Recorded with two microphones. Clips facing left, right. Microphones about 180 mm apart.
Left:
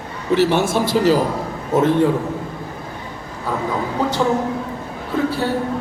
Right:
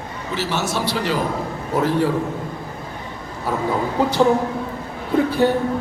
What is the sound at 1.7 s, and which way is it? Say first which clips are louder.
Speech: left 4 dB; 25° left (ahead or behind).